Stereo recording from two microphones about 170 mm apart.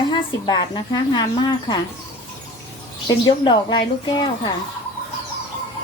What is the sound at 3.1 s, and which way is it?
A woman's voice, 25° left (ahead or behind).